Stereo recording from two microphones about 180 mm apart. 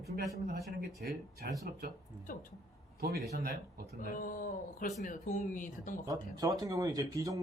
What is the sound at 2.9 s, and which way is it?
Speech, 55° right (ahead or behind).